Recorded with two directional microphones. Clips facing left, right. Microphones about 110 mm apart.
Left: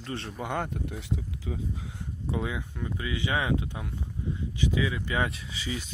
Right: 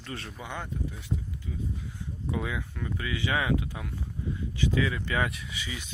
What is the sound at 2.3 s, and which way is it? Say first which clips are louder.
Speech: left 1 dB; 25° left (ahead or behind).